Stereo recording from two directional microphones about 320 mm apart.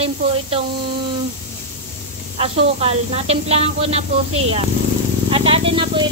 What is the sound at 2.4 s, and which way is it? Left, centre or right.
Speech, centre.